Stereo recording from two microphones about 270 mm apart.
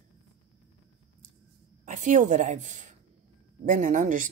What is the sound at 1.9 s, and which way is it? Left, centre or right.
Speech, right.